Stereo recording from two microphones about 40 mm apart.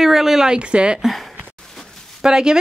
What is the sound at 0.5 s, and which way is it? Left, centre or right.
Speech, right.